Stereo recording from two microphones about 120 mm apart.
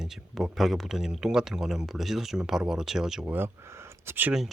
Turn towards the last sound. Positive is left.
turn(degrees=-15)  # may be behind; listen again after turning